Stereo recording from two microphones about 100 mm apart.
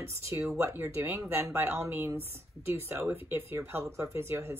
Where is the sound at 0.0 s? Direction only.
25° right (ahead or behind).